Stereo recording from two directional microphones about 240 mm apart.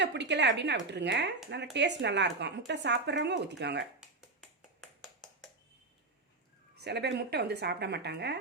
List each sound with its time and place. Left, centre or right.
0.0 s speech: right
4.2 s a sound: centre
6.7 s speech: right